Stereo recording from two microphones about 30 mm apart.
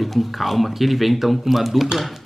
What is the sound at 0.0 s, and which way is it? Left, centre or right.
Speech, centre.